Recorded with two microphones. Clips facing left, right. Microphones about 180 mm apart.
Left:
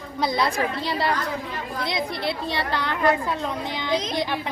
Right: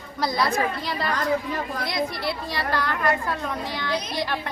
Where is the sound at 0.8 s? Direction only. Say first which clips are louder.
Left 3 dB; 30° left (ahead or behind).